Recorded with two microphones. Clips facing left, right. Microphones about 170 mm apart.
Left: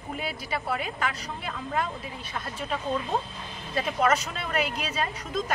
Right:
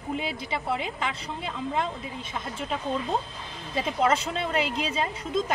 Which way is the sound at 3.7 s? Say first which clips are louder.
Even; 25° right (ahead or behind).